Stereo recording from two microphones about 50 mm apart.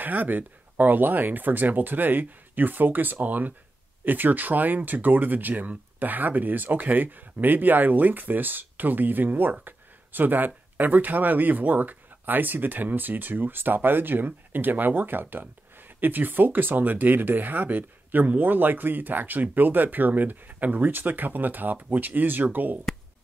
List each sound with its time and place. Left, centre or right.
0.0 s speech: right